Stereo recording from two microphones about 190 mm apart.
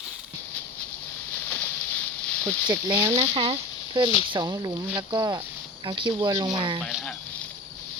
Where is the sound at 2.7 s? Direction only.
20° right (ahead or behind).